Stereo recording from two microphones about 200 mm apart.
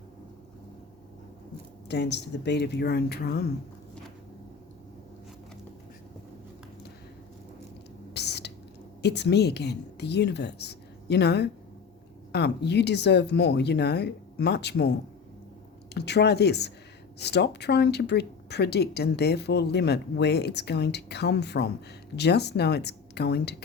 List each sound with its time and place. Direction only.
1.9 s speech: 60° left (ahead or behind)
8.1 s whispering: 55° left (ahead or behind)
9.0 s a woman's voice: 55° left (ahead or behind)
16.0 s speech: 55° left (ahead or behind)